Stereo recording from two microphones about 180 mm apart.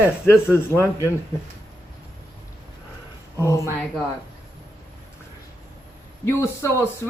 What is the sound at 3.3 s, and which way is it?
Speech, 15° left (ahead or behind).